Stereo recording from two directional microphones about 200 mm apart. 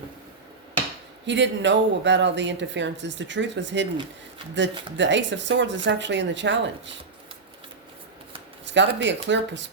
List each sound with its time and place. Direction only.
1.3 s a woman's voice: 65° right (ahead or behind)
4.9 s a woman's voice: 65° right (ahead or behind)
8.6 s a sound: 65° right (ahead or behind)
9.0 s a woman's voice: 65° right (ahead or behind)